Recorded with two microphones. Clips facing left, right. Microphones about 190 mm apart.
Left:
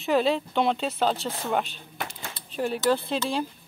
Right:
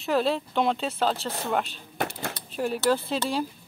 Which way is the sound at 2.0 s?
65° right (ahead or behind).